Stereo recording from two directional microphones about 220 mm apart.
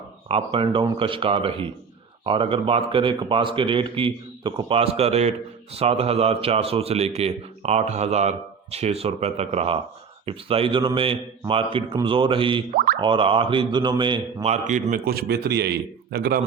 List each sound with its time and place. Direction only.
0.3 s a man's voice: 25° right (ahead or behind); by 16.4 s 45° right (ahead or behind)